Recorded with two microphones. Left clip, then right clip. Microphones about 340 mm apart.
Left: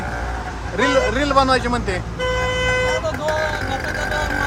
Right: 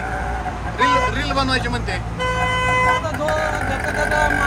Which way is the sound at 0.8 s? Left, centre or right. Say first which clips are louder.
Even; left.